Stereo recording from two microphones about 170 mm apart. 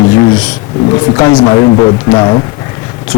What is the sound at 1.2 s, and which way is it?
Speech, 25° left (ahead or behind).